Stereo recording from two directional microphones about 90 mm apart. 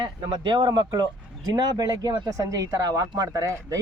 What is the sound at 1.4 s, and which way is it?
Speech, 45° right (ahead or behind).